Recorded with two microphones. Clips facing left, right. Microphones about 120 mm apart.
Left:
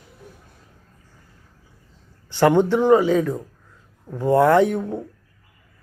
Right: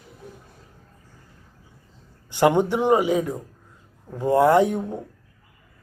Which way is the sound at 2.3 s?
15° right (ahead or behind).